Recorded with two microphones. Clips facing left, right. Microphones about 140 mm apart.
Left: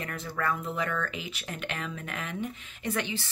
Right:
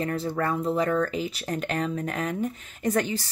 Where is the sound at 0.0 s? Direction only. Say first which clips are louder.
Right 6 dB; 30° right (ahead or behind).